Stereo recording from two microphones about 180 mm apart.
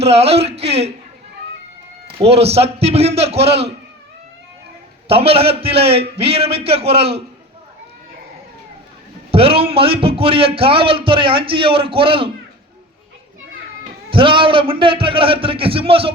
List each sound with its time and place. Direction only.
0.0 s speech: 35° right (ahead or behind)
2.0 s a man's voice: 35° right (ahead or behind)
5.0 s a man's voice: 30° right (ahead or behind)
9.3 s a man's voice: 30° right (ahead or behind)
14.1 s a man's voice: 30° right (ahead or behind)